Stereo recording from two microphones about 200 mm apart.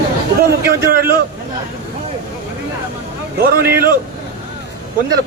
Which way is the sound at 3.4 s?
50° right (ahead or behind).